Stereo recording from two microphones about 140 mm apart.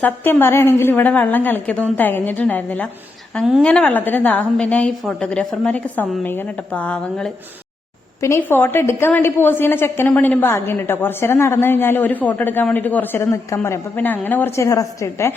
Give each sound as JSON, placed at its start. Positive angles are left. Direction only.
{"t": 0.0, "sound": "a woman's voice", "side_deg": 15}
{"t": 8.2, "sound": "a woman's voice", "side_deg": 15}